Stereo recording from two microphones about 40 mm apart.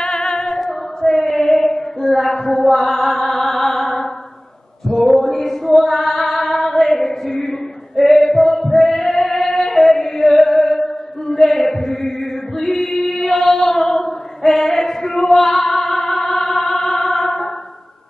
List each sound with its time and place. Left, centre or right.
0.0 s music: centre
0.6 s female singing: centre
2.0 s music: centre
4.8 s female singing: centre
10.0 s chant: centre
12.5 s female singing: centre